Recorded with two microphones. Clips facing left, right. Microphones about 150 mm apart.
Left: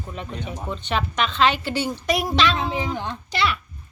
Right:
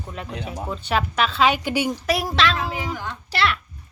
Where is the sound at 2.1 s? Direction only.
Centre (ahead or behind).